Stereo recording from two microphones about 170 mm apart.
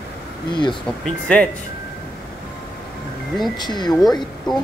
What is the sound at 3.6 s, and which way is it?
Speech, 25° left (ahead or behind).